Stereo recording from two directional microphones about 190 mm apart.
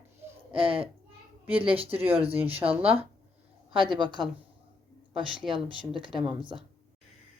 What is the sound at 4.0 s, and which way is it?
Speech, 25° right (ahead or behind).